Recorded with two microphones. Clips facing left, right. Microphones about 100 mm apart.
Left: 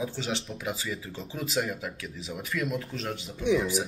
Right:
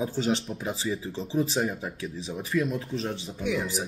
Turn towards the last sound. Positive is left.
turn(degrees=25)  # may be behind; listen again after turning